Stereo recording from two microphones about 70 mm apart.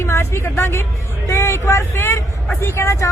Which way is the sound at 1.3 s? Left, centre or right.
Left.